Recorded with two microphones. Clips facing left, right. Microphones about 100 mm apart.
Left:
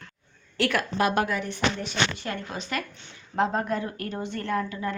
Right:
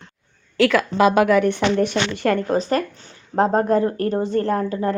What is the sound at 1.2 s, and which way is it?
Speech, 75° right (ahead or behind).